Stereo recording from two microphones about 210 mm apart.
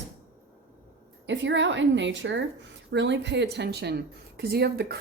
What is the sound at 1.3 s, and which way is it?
A woman's voice, 60° right (ahead or behind).